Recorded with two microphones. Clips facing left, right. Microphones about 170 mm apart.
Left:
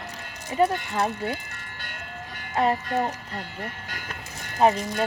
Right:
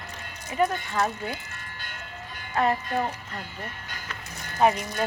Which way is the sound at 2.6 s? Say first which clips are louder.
Left 1 dB; 25° left (ahead or behind).